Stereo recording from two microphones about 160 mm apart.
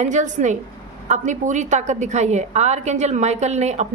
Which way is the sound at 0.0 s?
50° right (ahead or behind).